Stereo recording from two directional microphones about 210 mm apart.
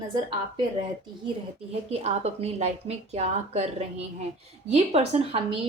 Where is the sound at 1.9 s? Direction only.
30° right (ahead or behind).